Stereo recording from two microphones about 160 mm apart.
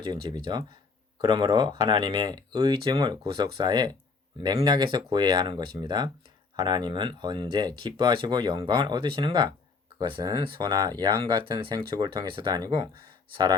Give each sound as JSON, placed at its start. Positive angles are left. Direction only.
{"t": 0.0, "sound": "speech", "side_deg": -30}